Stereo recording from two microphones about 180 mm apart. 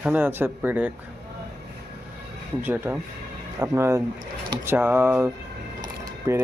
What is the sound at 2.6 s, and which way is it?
Speech, 10° right (ahead or behind).